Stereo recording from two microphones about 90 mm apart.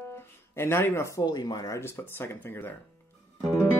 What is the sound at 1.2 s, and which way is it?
Speech, 50° left (ahead or behind).